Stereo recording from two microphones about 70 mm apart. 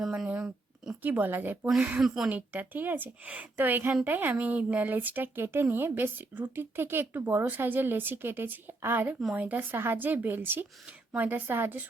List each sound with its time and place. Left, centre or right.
0.3 s a sound: centre
1.0 s speech: right
2.0 s a woman's voice: centre
2.3 s speech: right